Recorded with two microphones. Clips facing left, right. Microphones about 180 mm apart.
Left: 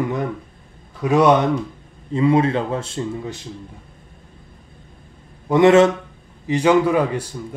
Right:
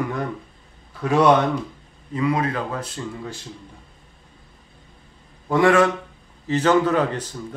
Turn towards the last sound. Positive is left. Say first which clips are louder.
# left 3 dB
turn(degrees=10)  # may be behind; listen again after turning